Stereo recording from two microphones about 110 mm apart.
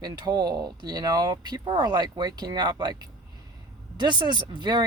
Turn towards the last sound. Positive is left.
turn(degrees=-45)  # may be behind; listen again after turning